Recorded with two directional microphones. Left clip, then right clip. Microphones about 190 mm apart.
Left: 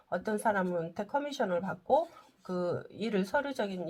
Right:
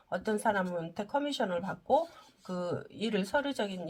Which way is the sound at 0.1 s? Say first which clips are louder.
Even; 25° left (ahead or behind).